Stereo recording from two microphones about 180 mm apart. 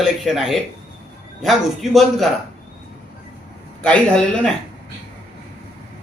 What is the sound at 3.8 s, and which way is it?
Speech, 5° left (ahead or behind).